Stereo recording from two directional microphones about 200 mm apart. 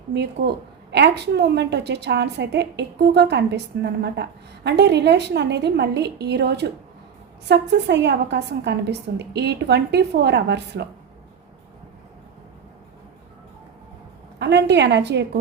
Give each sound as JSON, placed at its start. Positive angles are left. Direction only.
{"t": 0.1, "sound": "a woman's voice", "side_deg": -55}
{"t": 14.3, "sound": "a woman's voice", "side_deg": -60}